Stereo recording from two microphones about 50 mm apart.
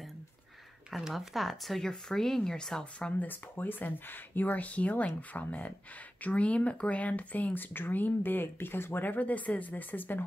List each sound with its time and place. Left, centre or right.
0.9 s speech: centre
3.2 s speech: left